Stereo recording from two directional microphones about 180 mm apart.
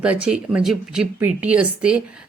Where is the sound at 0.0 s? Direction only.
5° right (ahead or behind).